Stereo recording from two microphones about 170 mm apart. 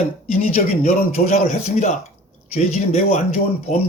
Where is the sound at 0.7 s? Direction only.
50° left (ahead or behind).